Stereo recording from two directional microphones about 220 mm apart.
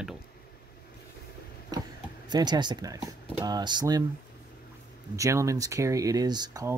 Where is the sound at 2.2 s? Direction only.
20° right (ahead or behind).